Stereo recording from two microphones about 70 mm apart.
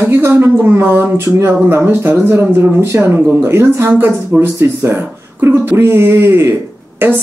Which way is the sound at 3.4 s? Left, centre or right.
Right.